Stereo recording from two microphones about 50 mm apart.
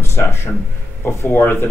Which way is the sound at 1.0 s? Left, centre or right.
Left.